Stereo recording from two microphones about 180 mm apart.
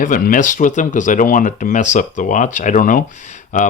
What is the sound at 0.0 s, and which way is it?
Speech, 50° left (ahead or behind).